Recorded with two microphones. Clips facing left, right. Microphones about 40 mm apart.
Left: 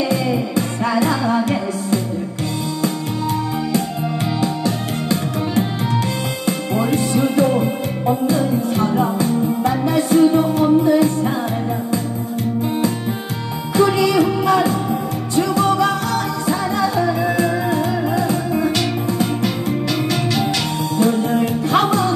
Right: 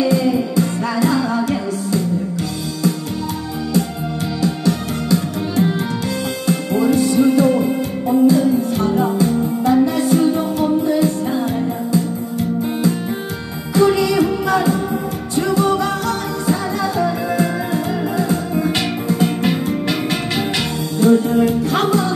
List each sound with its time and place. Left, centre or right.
0.1 s music: left
4.4 s music: left
13.7 s music: left
19.2 s music: right
21.0 s music: left